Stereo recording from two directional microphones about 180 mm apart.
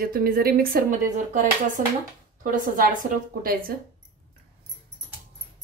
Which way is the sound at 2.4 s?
50° right (ahead or behind).